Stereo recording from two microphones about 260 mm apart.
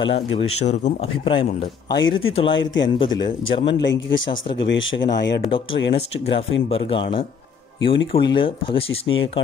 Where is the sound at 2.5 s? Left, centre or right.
Left.